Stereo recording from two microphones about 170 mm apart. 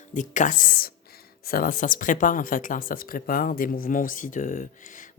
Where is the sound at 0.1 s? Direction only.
50° left (ahead or behind).